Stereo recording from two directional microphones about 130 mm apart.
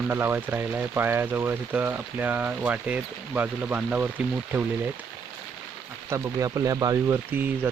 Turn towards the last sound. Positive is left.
turn(degrees=-15)  # may be behind; listen again after turning